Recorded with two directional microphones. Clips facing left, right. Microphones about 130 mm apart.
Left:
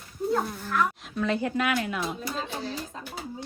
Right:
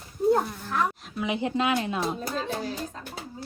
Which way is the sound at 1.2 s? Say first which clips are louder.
Even; 20° right (ahead or behind).